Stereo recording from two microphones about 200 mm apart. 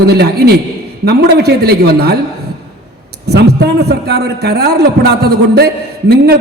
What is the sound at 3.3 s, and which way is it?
A man's voice, 55° right (ahead or behind).